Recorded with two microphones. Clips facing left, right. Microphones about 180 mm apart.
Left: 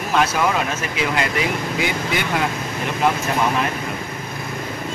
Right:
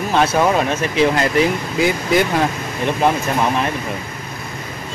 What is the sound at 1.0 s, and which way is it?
Speech, 40° right (ahead or behind).